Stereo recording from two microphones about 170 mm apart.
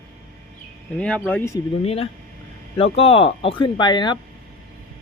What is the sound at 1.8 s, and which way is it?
Speech, 35° left (ahead or behind).